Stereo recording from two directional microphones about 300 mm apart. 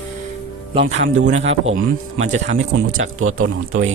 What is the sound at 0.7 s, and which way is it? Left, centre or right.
Speech, centre.